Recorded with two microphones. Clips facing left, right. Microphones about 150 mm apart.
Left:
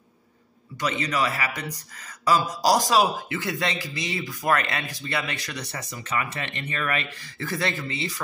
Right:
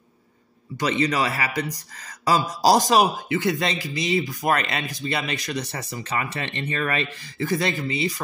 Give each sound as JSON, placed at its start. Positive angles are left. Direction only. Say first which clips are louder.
{"t": 0.7, "sound": "speech", "louder": "right 4 dB", "side_deg": -30}
{"t": 3.0, "sound": "speech", "louder": "right 3 dB", "side_deg": -20}
{"t": 7.3, "sound": "speech", "louder": "right 4 dB", "side_deg": -15}